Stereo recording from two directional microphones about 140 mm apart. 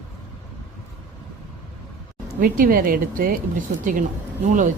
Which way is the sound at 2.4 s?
85° right.